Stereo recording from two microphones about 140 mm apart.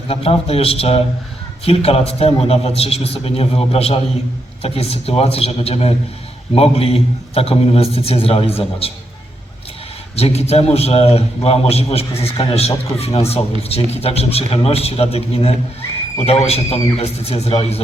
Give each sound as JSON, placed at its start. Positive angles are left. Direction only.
{"t": 0.1, "sound": "a man's voice", "side_deg": 45}
{"t": 10.2, "sound": "a man's voice", "side_deg": 50}